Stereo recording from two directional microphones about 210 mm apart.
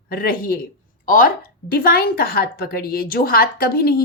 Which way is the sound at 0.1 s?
45° left (ahead or behind).